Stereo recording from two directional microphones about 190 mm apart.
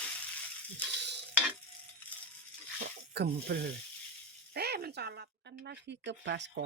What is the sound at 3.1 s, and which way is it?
Speech, 60° right (ahead or behind).